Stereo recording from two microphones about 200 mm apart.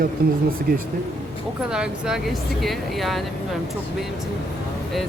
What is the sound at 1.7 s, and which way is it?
Speech, 5° right (ahead or behind).